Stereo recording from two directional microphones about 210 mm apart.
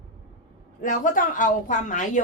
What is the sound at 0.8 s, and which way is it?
A woman's voice, 40° left (ahead or behind).